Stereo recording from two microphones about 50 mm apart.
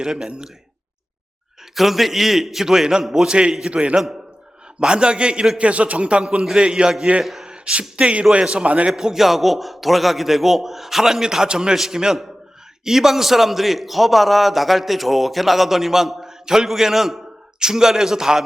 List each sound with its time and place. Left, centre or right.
0.0 s a man's voice: centre
1.7 s a man's voice: centre; by 3.9 s right
3.9 s a man's voice: centre
4.8 s a man's voice: centre
8.9 s a man's voice: centre